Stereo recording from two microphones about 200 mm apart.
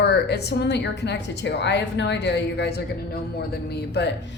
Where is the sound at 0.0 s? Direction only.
55° left (ahead or behind).